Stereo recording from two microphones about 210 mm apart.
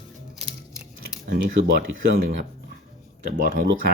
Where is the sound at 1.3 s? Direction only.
55° right (ahead or behind).